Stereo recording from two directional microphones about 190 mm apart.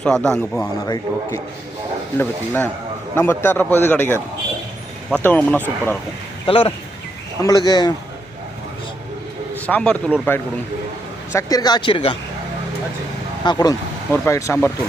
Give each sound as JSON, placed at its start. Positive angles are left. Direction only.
{"t": 0.0, "sound": "a man's voice", "side_deg": 5}
{"t": 2.1, "sound": "speech", "side_deg": 10}
{"t": 6.4, "sound": "speech", "side_deg": 30}
{"t": 9.6, "sound": "speech", "side_deg": 5}
{"t": 13.4, "sound": "speech", "side_deg": 20}